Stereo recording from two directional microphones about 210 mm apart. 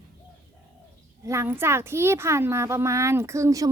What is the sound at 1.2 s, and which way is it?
Speech, 15° right (ahead or behind).